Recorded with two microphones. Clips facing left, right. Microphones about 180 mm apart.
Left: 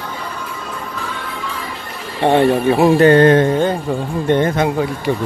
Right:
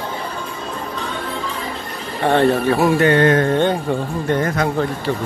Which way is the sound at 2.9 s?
35° left (ahead or behind).